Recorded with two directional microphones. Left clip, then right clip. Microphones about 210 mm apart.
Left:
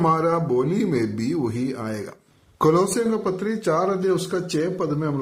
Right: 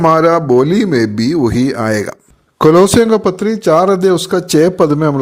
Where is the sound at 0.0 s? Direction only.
35° right (ahead or behind).